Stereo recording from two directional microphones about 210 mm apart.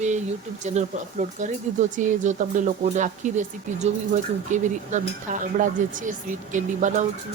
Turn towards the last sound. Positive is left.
turn(degrees=-35)  # may be behind; listen again after turning